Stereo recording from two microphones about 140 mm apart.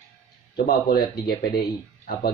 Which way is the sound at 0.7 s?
90° left.